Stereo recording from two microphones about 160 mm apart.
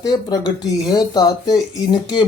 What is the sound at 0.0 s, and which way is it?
Speech, 25° left (ahead or behind).